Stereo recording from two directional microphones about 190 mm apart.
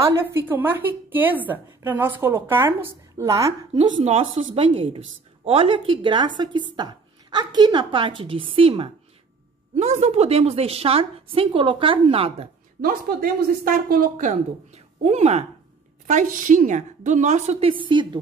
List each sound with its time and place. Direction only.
0.2 s a woman's voice: 10° right (ahead or behind)
3.7 s a woman's voice: 35° right (ahead or behind)
12.8 s a woman's voice: 50° right (ahead or behind); by 18.2 s 25° right (ahead or behind)